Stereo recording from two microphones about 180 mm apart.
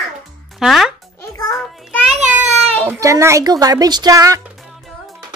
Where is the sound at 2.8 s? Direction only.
15° right (ahead or behind).